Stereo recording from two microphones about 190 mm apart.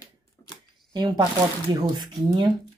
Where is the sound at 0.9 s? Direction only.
25° right (ahead or behind).